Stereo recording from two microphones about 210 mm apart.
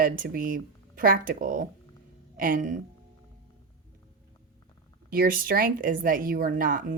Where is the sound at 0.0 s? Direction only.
40° right (ahead or behind).